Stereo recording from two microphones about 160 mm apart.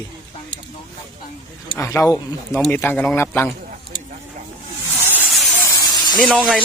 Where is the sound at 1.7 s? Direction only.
15° left (ahead or behind).